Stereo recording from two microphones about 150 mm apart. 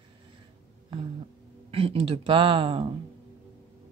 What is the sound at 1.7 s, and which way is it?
Speech, 40° right (ahead or behind).